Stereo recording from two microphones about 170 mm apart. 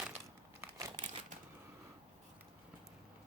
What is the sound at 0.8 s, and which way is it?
Crumpling, 20° right (ahead or behind).